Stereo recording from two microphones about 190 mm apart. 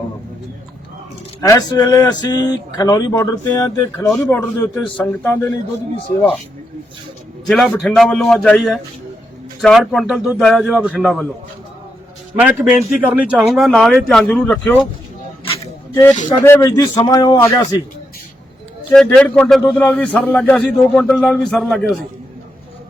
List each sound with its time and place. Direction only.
1.4 s a man's voice: 20° left (ahead or behind)
7.4 s a man's voice: 5° left (ahead or behind)
12.4 s a man's voice: 5° right (ahead or behind)
16.4 s speech: 15° left (ahead or behind)
18.9 s a man's voice: 5° left (ahead or behind)